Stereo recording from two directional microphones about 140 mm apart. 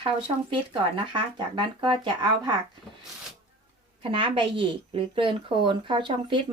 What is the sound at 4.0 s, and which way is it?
A woman's voice, 40° right (ahead or behind).